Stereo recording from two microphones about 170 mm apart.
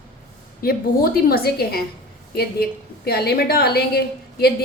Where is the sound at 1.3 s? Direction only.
65° left (ahead or behind).